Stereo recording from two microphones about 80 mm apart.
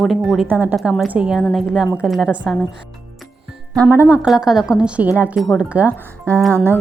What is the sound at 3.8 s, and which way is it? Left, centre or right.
Speech, right.